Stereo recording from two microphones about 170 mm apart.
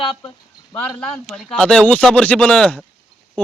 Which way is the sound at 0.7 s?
10° left (ahead or behind).